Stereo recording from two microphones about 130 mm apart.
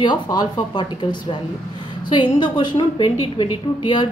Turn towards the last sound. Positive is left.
turn(degrees=40)  # may be behind; listen again after turning